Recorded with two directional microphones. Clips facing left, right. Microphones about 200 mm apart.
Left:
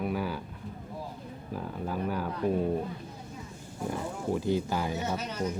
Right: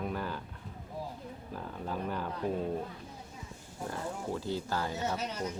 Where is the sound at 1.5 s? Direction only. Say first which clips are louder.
Left 4 dB; 5° left (ahead or behind).